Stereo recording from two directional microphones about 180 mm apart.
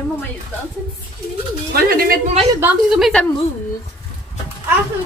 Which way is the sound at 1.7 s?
55° right (ahead or behind).